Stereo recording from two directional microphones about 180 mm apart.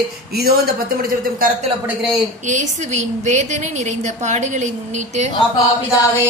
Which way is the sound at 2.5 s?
40° right (ahead or behind).